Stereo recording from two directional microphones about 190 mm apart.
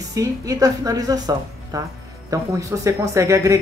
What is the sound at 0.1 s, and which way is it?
Speech, 20° right (ahead or behind).